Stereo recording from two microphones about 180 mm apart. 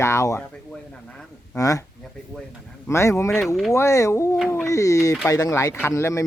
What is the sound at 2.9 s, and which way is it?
A man's voice, 15° left (ahead or behind).